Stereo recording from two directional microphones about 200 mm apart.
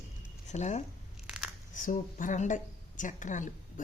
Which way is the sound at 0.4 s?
35° left (ahead or behind).